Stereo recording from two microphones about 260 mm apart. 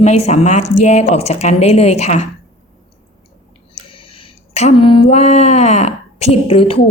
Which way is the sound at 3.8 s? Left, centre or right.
Centre.